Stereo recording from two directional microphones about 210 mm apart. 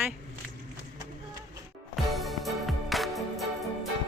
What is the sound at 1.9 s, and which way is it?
Music, centre (ahead or behind).